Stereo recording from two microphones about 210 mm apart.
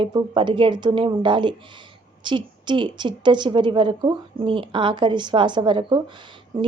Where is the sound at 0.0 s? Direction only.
20° right (ahead or behind).